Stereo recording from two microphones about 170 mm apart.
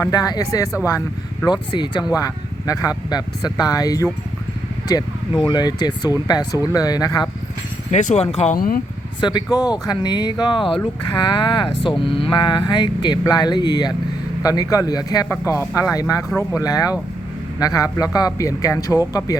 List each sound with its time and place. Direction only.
0.0 s speech: 20° left (ahead or behind)
7.9 s speech: 40° left (ahead or behind)
8.5 s speech: 60° left (ahead or behind)
9.2 s speech: 25° left (ahead or behind)